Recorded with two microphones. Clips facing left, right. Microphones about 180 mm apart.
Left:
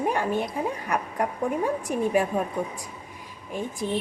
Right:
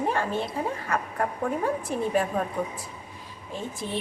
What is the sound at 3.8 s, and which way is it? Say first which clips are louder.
Speech: left 5 dB; 15° left (ahead or behind).